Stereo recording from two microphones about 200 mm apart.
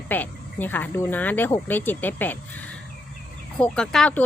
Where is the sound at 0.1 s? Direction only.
10° left (ahead or behind).